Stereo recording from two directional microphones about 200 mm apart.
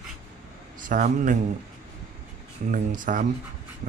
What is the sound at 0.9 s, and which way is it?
Speech, 40° right (ahead or behind).